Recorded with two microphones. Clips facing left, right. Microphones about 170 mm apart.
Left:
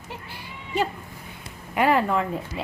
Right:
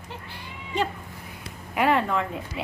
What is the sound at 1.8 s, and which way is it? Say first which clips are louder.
Speech: left 2 dB; centre (ahead or behind).